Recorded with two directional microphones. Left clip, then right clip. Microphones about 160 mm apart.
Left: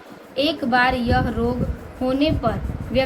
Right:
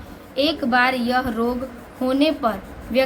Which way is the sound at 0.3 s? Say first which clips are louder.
Even; 30° right (ahead or behind).